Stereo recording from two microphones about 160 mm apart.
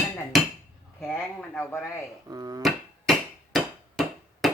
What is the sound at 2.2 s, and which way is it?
Speech, 25° right (ahead or behind).